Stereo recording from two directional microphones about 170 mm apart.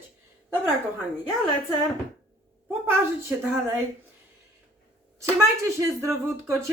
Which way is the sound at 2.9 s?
15° right (ahead or behind).